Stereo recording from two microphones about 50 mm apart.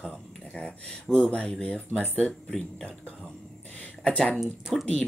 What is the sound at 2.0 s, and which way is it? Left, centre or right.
Speech, left.